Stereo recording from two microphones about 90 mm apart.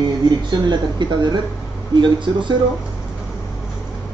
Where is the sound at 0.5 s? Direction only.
55° right (ahead or behind).